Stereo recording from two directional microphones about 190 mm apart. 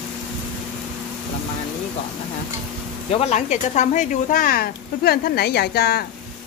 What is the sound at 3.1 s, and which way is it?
Speech, 35° left (ahead or behind).